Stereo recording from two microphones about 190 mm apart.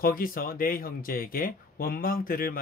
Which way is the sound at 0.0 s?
50° left (ahead or behind).